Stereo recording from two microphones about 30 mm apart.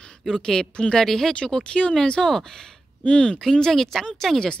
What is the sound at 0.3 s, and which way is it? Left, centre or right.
Speech, centre.